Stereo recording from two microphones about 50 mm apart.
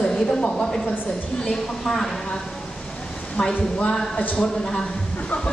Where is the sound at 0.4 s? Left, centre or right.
Centre.